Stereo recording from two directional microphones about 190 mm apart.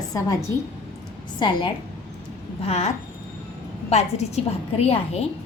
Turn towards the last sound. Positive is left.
turn(degrees=35)  # may be behind; listen again after turning